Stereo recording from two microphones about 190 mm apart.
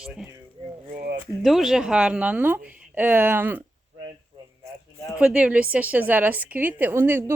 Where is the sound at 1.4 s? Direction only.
Centre (ahead or behind).